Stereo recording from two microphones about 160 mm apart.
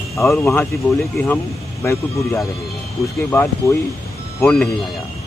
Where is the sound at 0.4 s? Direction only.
15° left (ahead or behind).